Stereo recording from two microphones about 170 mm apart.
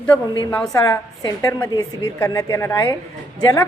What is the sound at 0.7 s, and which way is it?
A woman's voice, 20° left (ahead or behind).